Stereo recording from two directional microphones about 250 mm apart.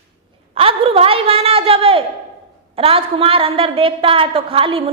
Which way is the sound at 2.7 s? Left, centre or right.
Right.